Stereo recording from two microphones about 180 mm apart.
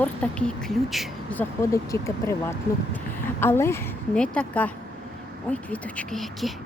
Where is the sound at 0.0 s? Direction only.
5° left (ahead or behind).